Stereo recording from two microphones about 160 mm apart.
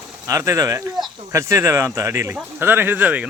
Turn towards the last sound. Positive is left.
turn(degrees=-10)  # may be behind; listen again after turning